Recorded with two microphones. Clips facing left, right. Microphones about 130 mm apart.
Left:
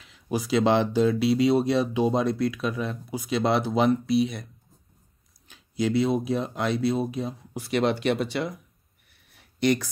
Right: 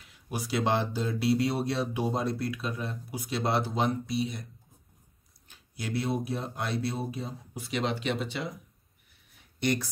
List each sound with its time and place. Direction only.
0.1 s speech: 90° left
5.5 s speech: 90° left; by 8.5 s 65° left (ahead or behind)
9.6 s speech: 90° left